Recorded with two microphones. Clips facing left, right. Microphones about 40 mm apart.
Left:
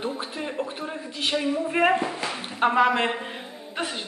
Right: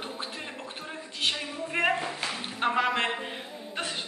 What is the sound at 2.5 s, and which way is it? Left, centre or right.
Speech, centre.